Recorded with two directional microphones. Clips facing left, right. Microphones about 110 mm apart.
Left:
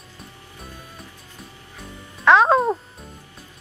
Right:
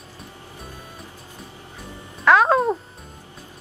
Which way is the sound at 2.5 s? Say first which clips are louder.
Left 1 dB; centre (ahead or behind).